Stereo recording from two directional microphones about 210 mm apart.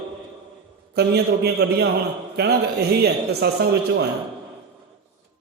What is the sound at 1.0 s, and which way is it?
A man's voice, 50° right (ahead or behind).